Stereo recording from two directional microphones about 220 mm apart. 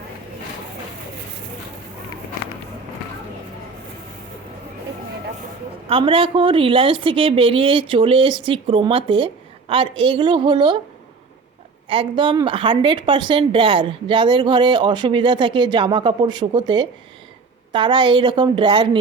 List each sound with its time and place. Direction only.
5.9 s a woman's voice: 25° right (ahead or behind)
11.9 s a woman's voice: 20° right (ahead or behind)